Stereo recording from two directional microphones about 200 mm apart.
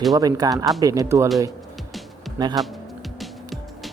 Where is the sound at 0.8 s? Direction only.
15° right (ahead or behind).